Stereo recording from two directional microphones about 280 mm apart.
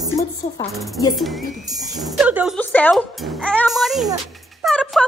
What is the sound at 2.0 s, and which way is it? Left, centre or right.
Speech, centre.